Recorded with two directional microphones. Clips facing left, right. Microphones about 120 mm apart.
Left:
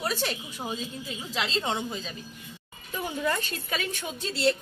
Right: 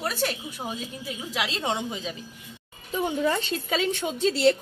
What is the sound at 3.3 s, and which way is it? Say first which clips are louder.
Speech: right 4 dB; 25° right (ahead or behind).